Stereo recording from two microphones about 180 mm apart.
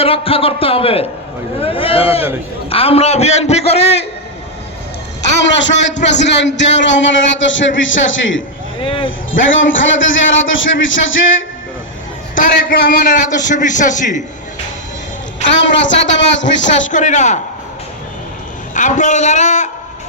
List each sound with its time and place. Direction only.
0.0 s a man's voice: 30° left (ahead or behind)
5.4 s a man's voice: 85° left
8.8 s speech: 30° left (ahead or behind)
9.0 s a man's voice: 90° left
12.3 s a man's voice: 50° left (ahead or behind)
15.5 s a man's voice: 90° left
16.9 s a man's voice: 45° left (ahead or behind)
18.7 s a man's voice: 45° left (ahead or behind)